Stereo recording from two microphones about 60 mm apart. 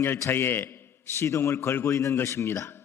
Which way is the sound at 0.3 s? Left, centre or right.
Left.